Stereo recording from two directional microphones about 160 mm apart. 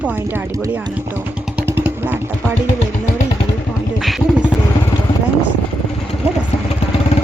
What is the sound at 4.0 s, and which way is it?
Vehicle, centre (ahead or behind).